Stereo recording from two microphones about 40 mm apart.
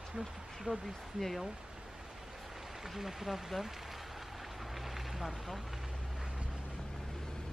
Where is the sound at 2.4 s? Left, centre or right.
Centre.